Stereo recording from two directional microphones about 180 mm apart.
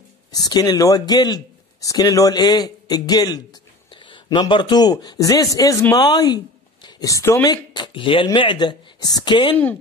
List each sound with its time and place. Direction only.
0.3 s a man's voice: 20° left (ahead or behind)